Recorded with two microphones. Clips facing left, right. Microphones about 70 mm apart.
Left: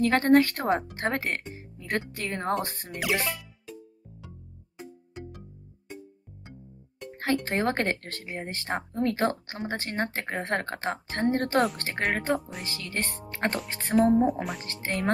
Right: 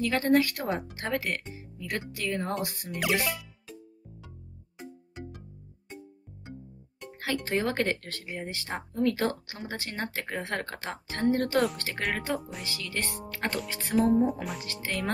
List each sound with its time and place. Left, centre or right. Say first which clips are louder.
0.0 s speech: left 4 dB; left
7.2 s speech: left 2 dB; left
12.4 s speech: left 2 dB; centre
12.6 s speech: left 1 dB; left
14.2 s speech: left 2 dB; centre
14.6 s speech: left 2 dB; left